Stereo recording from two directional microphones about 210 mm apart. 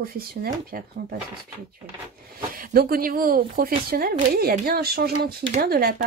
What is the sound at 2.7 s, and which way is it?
Speech, 45° right (ahead or behind).